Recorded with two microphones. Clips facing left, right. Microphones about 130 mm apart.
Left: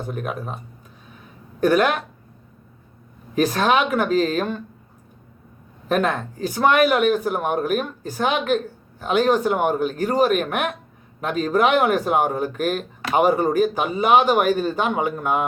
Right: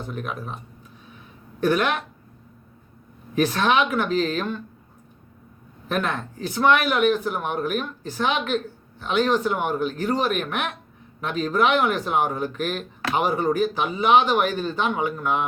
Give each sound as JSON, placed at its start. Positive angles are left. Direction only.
{"t": 0.1, "sound": "speech", "side_deg": 45}
{"t": 1.6, "sound": "speech", "side_deg": 45}
{"t": 3.3, "sound": "speech", "side_deg": 45}
{"t": 5.9, "sound": "speech", "side_deg": 45}